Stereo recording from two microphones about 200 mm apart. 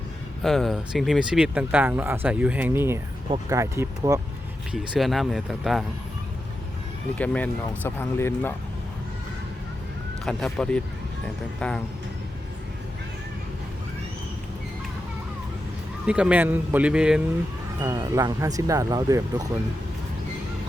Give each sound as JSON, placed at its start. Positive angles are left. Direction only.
{"t": 0.4, "sound": "a man's voice", "side_deg": 0}
{"t": 4.7, "sound": "a man's voice", "side_deg": 0}
{"t": 7.2, "sound": "speech", "side_deg": 5}
{"t": 10.2, "sound": "a man's voice", "side_deg": 5}
{"t": 16.0, "sound": "a man's voice", "side_deg": -5}
{"t": 17.7, "sound": "speech", "side_deg": -20}